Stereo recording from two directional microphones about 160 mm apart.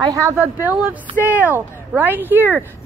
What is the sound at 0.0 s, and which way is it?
A woman's voice, 20° right (ahead or behind).